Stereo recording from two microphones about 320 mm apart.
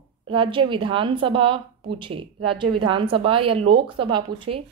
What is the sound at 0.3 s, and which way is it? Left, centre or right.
A woman's voice, centre.